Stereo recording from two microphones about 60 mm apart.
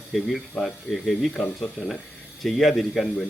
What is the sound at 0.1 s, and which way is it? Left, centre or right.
Speech, centre.